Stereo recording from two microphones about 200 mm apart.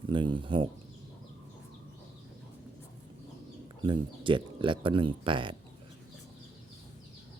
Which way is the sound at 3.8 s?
25° right (ahead or behind).